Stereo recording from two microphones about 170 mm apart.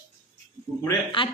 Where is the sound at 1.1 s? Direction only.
30° left (ahead or behind).